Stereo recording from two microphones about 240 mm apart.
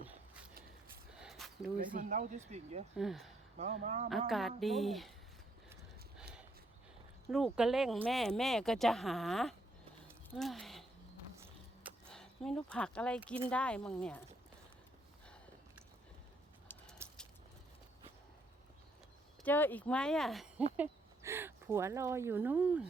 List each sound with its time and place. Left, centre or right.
1.2 s a sound: centre
1.9 s speech: right
3.0 s speech: centre
3.6 s speech: right
4.3 s speech: centre
7.3 s speech: centre
10.2 s a sound: centre
13.5 s speech: centre
17.0 s a sound: centre
19.5 s speech: centre